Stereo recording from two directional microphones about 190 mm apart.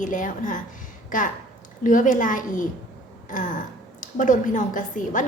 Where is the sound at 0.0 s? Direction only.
45° left (ahead or behind).